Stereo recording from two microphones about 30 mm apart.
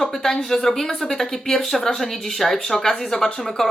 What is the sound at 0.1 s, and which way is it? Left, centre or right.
Speech, centre.